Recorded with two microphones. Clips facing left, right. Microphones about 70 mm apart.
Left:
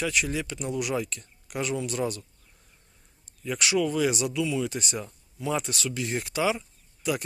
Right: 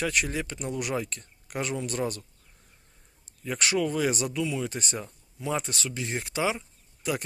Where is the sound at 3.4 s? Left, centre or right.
Right.